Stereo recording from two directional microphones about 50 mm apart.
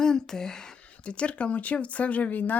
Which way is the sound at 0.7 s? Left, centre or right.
Left.